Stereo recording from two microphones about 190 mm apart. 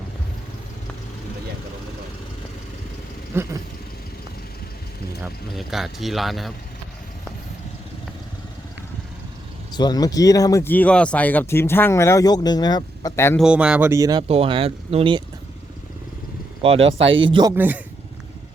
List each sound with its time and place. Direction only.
3.3 s speech: 10° right (ahead or behind)
5.2 s speech: centre (ahead or behind)
9.7 s speech: 20° left (ahead or behind)
13.4 s speech: 5° right (ahead or behind)
14.3 s speech: 30° right (ahead or behind)
17.2 s speech: 25° right (ahead or behind)
17.5 s speech: 10° right (ahead or behind)